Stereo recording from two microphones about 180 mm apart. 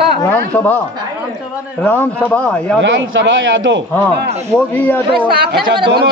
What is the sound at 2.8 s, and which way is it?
A man's voice, 90° right.